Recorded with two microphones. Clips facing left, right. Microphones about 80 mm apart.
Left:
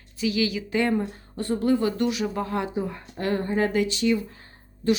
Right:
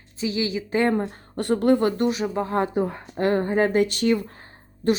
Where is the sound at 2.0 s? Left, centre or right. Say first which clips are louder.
Right 2 dB; right.